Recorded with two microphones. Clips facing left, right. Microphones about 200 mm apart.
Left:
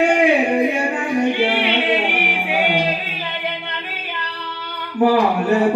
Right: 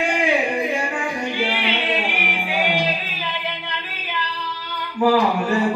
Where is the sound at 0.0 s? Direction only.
65° left (ahead or behind).